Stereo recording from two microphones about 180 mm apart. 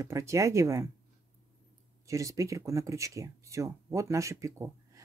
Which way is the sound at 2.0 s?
20° right (ahead or behind).